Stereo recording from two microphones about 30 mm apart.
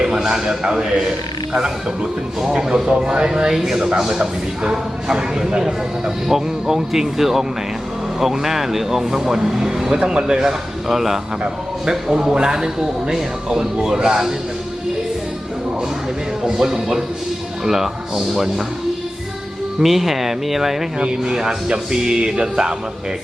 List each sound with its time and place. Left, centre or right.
0.0 s a man's voice: right
2.4 s a man's voice: centre
10.0 s a man's voice: right
10.9 s a man's voice: centre
16.5 s speech: centre
19.8 s speech: centre
21.0 s a man's voice: right